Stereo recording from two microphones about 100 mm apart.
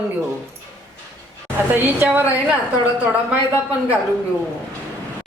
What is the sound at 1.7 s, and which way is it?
A woman's voice, 20° right (ahead or behind).